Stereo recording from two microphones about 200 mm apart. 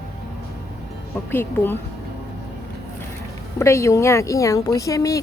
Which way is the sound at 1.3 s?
10° left (ahead or behind).